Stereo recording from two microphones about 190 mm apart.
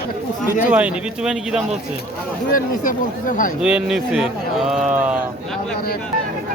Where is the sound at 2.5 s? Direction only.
45° left (ahead or behind).